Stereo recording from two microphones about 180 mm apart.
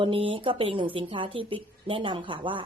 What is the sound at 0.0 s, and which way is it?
A woman's voice, 30° right (ahead or behind).